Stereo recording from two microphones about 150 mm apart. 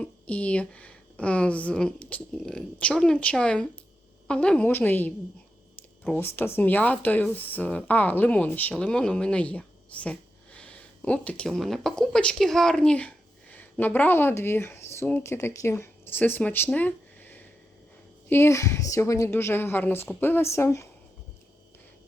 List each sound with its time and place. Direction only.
0.0 s speech: 10° left (ahead or behind)
6.1 s speech: 15° left (ahead or behind)